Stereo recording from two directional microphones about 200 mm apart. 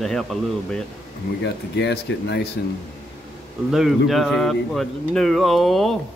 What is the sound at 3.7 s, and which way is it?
Speech, centre (ahead or behind).